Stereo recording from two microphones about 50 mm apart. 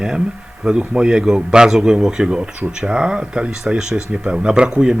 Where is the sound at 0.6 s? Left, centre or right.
Centre.